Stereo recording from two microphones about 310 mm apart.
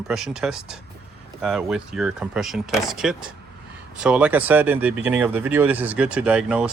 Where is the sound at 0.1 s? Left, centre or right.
Centre.